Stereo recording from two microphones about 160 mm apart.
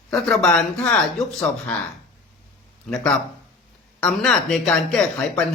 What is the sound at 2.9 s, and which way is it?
Speech, 5° left (ahead or behind).